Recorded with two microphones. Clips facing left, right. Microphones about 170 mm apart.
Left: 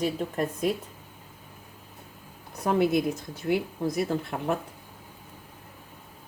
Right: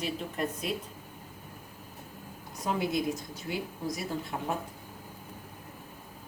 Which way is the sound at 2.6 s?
60° left (ahead or behind).